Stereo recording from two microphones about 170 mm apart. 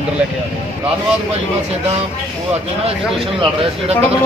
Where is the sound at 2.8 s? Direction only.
35° right (ahead or behind).